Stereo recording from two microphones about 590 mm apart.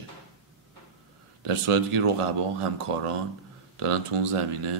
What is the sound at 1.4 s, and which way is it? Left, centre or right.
Speech, right.